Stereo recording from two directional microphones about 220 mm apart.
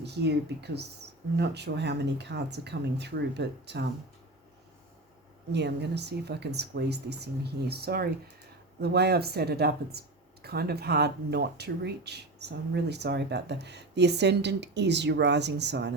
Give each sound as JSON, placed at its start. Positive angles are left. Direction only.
{"t": 0.0, "sound": "speech", "side_deg": -50}
{"t": 5.5, "sound": "speech", "side_deg": -50}